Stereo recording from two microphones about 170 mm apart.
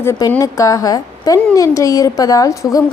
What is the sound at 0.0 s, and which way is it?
A woman's voice, 15° left (ahead or behind).